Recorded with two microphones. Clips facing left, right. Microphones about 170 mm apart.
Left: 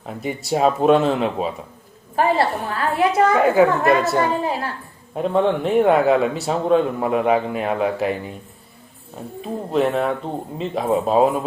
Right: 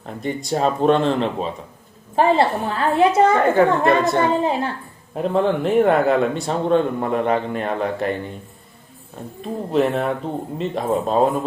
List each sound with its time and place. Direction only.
0.0 s speech: 5° left (ahead or behind)
2.1 s a woman's voice: 25° right (ahead or behind)
3.3 s speech: 10° left (ahead or behind)
4.2 s a woman's voice: 25° right (ahead or behind)
5.1 s speech: centre (ahead or behind)
9.4 s speech: centre (ahead or behind)